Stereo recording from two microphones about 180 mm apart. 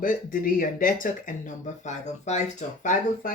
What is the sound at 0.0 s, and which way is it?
Speech, 50° left (ahead or behind).